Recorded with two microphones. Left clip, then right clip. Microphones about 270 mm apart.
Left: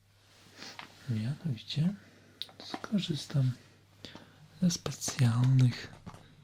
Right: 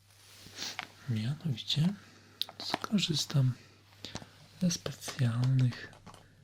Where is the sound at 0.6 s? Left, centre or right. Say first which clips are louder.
Right 7 dB; centre.